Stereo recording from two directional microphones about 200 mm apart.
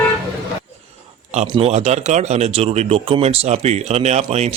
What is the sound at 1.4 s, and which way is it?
Speech, 30° right (ahead or behind).